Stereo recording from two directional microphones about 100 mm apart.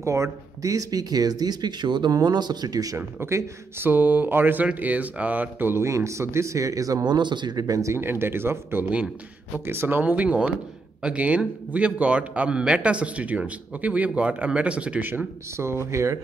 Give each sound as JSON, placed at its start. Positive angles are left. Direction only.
{"t": 0.0, "sound": "speech", "side_deg": -30}
{"t": 3.0, "sound": "a man's voice", "side_deg": -25}